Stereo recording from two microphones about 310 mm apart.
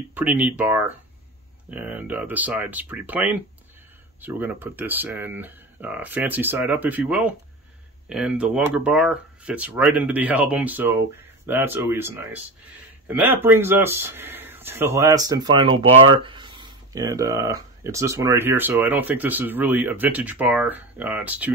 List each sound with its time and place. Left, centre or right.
0.1 s speech: centre